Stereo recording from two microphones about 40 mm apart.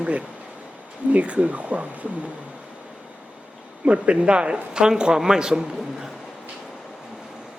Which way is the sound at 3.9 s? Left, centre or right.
Right.